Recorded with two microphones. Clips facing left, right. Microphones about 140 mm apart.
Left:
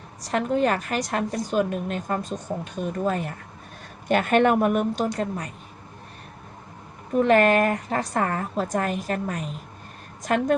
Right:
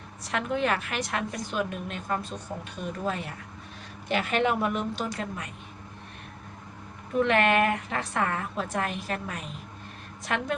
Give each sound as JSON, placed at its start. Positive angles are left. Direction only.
{"t": 0.2, "sound": "a woman's voice", "side_deg": 40}
{"t": 7.1, "sound": "a woman's voice", "side_deg": 40}